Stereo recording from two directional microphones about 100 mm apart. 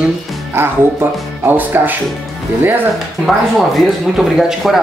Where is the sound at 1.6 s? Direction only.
20° right (ahead or behind).